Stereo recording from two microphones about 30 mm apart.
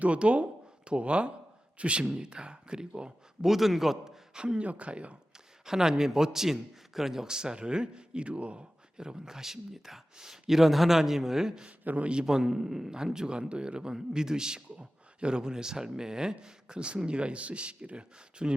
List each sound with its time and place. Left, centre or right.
0.0 s speech: right
3.4 s speech: centre
4.4 s speech: right
4.6 s speech: right
5.6 s speech: centre
7.3 s speech: right
9.0 s speech: right
11.9 s a man's voice: right
12.2 s speech: centre
13.2 s a man's voice: right